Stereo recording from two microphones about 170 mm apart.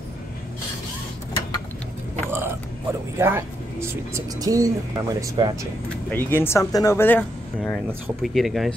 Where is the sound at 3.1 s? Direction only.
15° right (ahead or behind).